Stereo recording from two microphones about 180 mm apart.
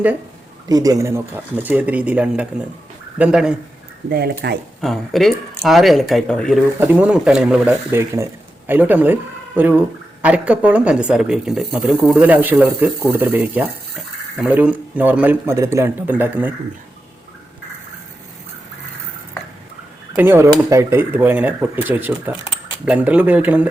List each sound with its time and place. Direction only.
0.7 s speech: 20° right (ahead or behind)
4.1 s speech: 55° right (ahead or behind)
4.8 s speech: centre (ahead or behind)
6.7 s speech: 10° right (ahead or behind)
20.1 s speech: 10° right (ahead or behind)